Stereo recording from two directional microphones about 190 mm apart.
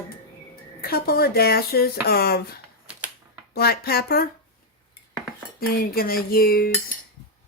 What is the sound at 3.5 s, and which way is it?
Speech, 55° left (ahead or behind).